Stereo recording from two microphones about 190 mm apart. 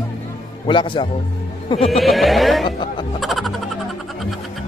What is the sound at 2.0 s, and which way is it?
Speech, centre (ahead or behind).